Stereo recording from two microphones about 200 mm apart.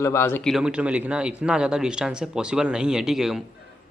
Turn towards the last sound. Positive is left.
turn(degrees=0)  # may be behind; listen again after turning